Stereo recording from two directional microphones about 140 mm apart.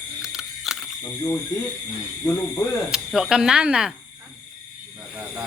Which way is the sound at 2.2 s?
15° left (ahead or behind).